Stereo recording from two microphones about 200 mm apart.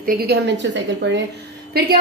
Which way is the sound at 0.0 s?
50° right (ahead or behind).